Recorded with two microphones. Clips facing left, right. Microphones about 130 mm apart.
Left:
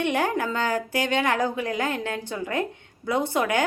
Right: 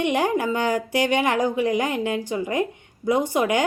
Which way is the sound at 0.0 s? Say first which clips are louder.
Right 3 dB; 15° right (ahead or behind).